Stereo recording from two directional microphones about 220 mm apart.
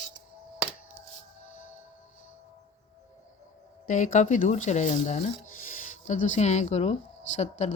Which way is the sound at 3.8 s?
35° left (ahead or behind).